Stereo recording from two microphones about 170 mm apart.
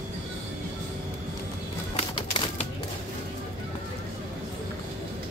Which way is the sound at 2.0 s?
35° left (ahead or behind).